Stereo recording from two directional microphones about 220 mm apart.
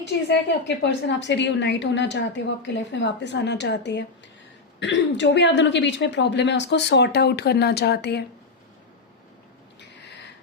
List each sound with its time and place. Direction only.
0.3 s a woman's voice: 50° left (ahead or behind)